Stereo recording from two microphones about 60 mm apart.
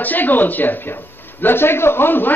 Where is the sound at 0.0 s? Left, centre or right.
Left.